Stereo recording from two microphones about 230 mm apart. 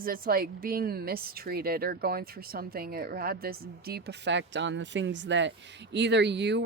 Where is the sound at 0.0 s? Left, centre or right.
Right.